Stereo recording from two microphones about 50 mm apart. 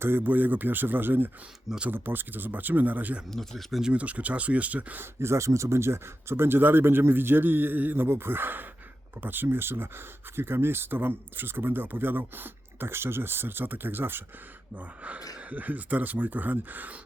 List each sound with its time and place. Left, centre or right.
0.0 s speech: right
3.3 s speech: centre
3.9 s speech: right
5.2 s speech: right
14.8 s speech: right